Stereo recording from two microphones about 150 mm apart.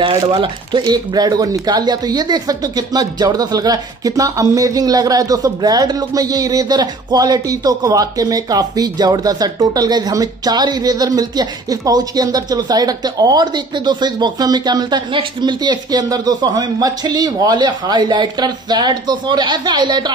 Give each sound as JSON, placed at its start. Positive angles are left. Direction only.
{"t": 0.0, "sound": "speech", "side_deg": -35}